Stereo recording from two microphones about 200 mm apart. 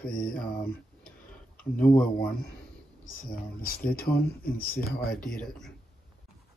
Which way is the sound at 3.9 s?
50° left (ahead or behind).